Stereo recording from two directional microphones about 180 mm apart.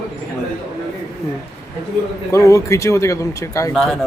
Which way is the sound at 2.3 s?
15° left (ahead or behind).